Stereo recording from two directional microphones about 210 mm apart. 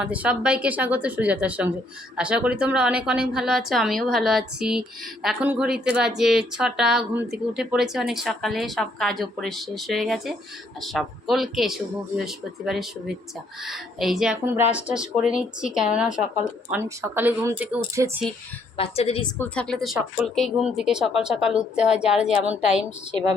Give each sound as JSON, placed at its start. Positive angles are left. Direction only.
{"t": 0.0, "sound": "a woman's voice", "side_deg": -5}
{"t": 18.8, "sound": "a woman's voice", "side_deg": 30}
{"t": 19.4, "sound": "a woman's voice", "side_deg": 5}